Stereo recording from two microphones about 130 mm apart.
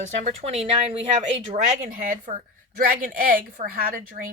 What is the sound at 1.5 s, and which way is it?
Speech, 75° right (ahead or behind).